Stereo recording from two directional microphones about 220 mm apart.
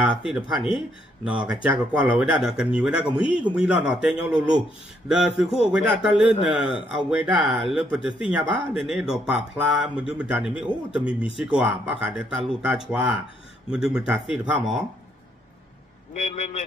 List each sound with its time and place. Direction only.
0.2 s speech: 5° right (ahead or behind)
16.2 s a man's voice: 30° left (ahead or behind)